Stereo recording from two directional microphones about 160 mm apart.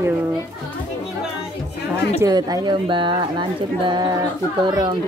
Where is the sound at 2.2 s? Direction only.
25° right (ahead or behind).